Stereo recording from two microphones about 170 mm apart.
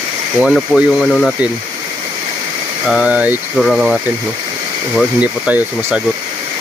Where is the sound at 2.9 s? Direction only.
5° right (ahead or behind).